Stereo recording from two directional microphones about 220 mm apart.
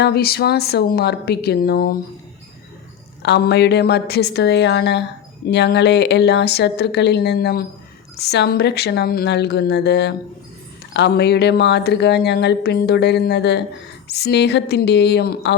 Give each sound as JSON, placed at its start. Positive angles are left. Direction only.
{"t": 0.0, "sound": "speech", "side_deg": 45}
{"t": 3.2, "sound": "speech", "side_deg": 50}